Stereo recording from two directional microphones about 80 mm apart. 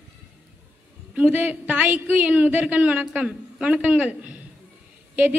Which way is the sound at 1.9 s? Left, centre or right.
Right.